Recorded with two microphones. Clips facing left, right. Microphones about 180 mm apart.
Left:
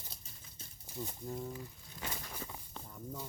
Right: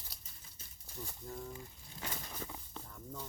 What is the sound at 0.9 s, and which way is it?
Speech, 20° left (ahead or behind).